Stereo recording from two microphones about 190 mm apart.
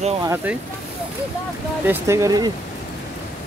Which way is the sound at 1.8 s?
15° right (ahead or behind).